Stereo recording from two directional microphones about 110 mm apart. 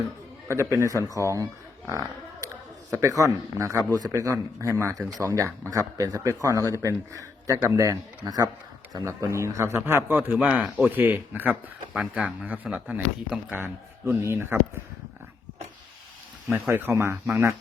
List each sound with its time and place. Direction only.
0.4 s a man's voice: 25° right (ahead or behind)
1.9 s a sound: 30° right (ahead or behind)
2.9 s a man's voice: 30° right (ahead or behind)
16.5 s a man's voice: 20° right (ahead or behind)